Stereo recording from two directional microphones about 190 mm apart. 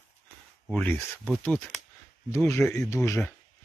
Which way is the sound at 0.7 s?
10° left (ahead or behind).